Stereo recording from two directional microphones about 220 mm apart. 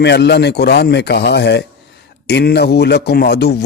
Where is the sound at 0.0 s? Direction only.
50° left (ahead or behind).